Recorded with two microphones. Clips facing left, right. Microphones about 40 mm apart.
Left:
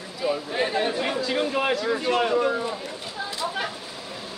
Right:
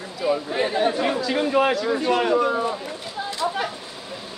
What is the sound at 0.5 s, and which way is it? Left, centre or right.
Speech, centre.